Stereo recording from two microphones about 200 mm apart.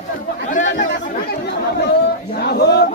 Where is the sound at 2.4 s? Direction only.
55° left (ahead or behind).